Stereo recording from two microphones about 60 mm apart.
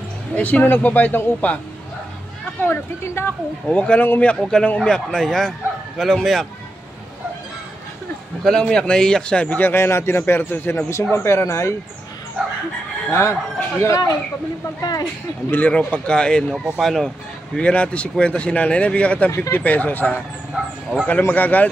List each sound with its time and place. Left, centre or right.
0.4 s speech: left
2.6 s a man's voice: left
3.6 s speech: left; by 6.4 s centre
8.5 s speech: centre
9.6 s a man's voice: left
13.1 s speech: left
14.8 s speech: left
15.9 s speech: centre
16.5 s speech: centre
16.8 s speech: centre
17.6 s speech: centre
20.5 s bow-wow: centre
21.3 s speech: left